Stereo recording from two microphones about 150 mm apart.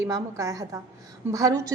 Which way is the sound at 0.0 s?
20° right (ahead or behind).